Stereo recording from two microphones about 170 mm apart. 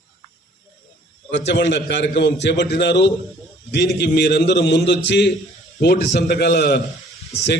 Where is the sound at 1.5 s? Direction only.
90° left.